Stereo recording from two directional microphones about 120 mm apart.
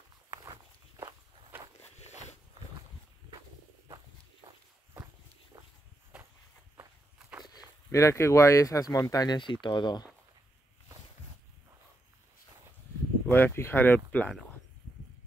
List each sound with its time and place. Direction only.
0.3 s walk: 30° right (ahead or behind)
4.4 s walk: 25° right (ahead or behind)
6.1 s walk: 10° right (ahead or behind)
7.9 s speech: 25° left (ahead or behind); by 10.0 s 40° left (ahead or behind)
13.3 s speech: 20° left (ahead or behind)